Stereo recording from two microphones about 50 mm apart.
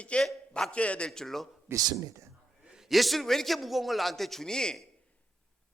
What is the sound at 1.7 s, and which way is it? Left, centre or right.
Speech, right.